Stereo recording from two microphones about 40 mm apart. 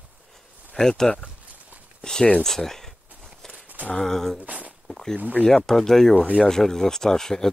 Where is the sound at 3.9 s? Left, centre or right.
Centre.